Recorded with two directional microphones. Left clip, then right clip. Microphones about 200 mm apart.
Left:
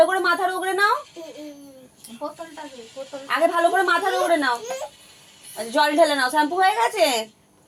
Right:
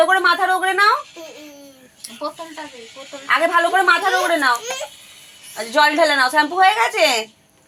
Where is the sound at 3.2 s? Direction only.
20° right (ahead or behind).